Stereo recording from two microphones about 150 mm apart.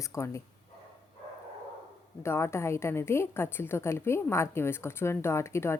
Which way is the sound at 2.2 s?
15° left (ahead or behind).